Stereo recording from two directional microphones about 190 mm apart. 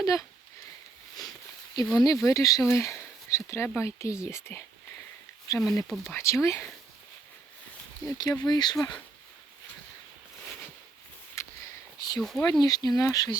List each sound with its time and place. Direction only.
0.0 s speech: 20° left (ahead or behind)
2.0 s speech: 15° left (ahead or behind)
8.0 s speech: 20° left (ahead or behind)
11.4 s a sound: 15° left (ahead or behind)
12.2 s speech: centre (ahead or behind)
12.5 s speech: 20° left (ahead or behind)